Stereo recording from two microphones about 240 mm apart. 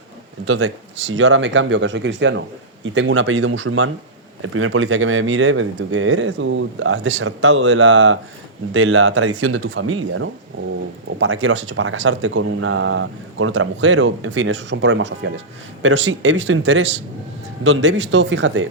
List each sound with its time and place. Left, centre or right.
0.4 s speech: right